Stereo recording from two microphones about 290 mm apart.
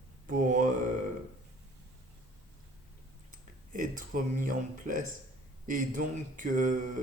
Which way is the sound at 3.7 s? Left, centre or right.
Right.